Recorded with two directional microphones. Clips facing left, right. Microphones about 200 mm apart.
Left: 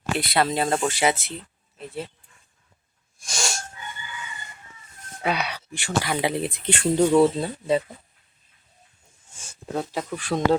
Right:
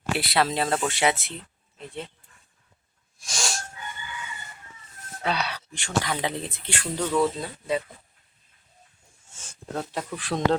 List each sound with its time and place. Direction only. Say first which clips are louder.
0.2 s speech: left 2 dB; centre (ahead or behind)
3.2 s sneeze: left 2 dB; centre (ahead or behind)
5.2 s speech: left 2 dB; 10° left (ahead or behind)
6.7 s speech: left 7 dB; 25° left (ahead or behind)
9.5 s speech: left 3 dB; 5° left (ahead or behind)